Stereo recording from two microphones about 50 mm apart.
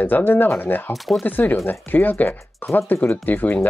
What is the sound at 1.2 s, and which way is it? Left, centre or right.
Speech, left.